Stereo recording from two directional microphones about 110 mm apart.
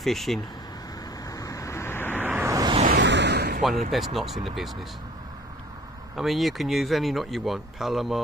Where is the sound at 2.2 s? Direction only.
15° right (ahead or behind).